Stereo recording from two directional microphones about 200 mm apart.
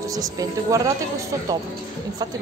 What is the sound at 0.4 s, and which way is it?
Speech, 15° right (ahead or behind).